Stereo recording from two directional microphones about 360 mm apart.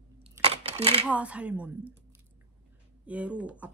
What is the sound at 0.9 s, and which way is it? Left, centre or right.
Speech, centre.